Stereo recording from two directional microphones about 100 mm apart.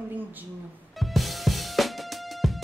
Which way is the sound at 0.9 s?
Centre (ahead or behind).